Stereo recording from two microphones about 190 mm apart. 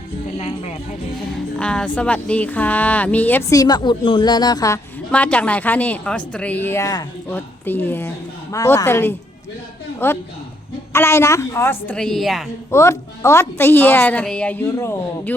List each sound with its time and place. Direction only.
0.3 s speech: 35° left (ahead or behind)
1.5 s speech: 5° left (ahead or behind)
5.1 s speech: 5° left (ahead or behind)
12.7 s speech: 15° left (ahead or behind)